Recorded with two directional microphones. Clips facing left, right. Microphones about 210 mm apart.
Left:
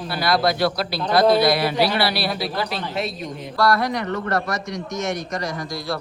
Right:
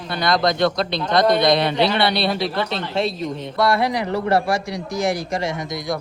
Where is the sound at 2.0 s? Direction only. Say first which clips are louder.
Right 3 dB; 25° right (ahead or behind).